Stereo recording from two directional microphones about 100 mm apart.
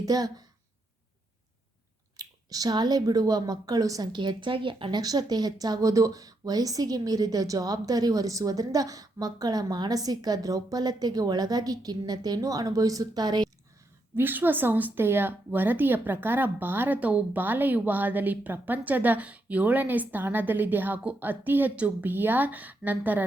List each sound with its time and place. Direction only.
0.0 s speech: 40° right (ahead or behind)
2.1 s speech: 40° right (ahead or behind)
4.1 s speech: 50° right (ahead or behind)
14.2 s a woman's voice: 20° right (ahead or behind)